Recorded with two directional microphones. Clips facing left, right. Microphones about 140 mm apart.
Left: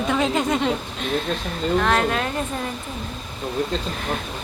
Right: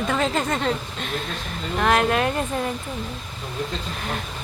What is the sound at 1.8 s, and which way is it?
Speech, 5° right (ahead or behind).